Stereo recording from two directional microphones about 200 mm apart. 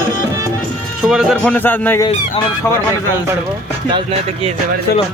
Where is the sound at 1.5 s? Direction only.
10° left (ahead or behind).